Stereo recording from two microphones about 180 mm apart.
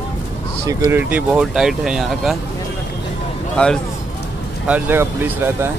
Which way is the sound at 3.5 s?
5° left (ahead or behind).